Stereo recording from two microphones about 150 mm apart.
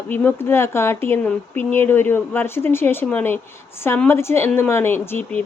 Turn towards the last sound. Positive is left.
turn(degrees=15)  # may be behind; listen again after turning